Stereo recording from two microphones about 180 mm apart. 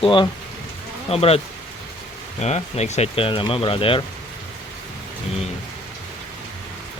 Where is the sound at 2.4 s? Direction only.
35° left (ahead or behind).